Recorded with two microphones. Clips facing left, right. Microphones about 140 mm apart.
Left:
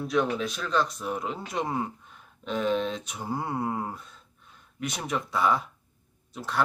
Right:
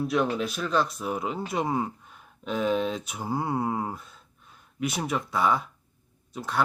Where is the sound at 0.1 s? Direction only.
5° right (ahead or behind).